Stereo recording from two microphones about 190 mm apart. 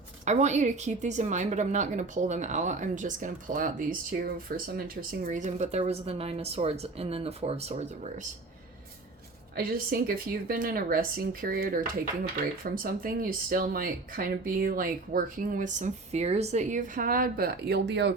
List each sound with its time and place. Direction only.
0.3 s speech: 35° right (ahead or behind)
9.6 s speech: 50° right (ahead or behind)